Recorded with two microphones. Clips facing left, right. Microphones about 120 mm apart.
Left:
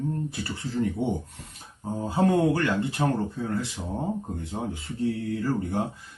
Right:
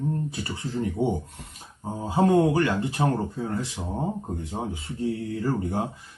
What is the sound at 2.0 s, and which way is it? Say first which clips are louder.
Speech: right 2 dB; 15° right (ahead or behind).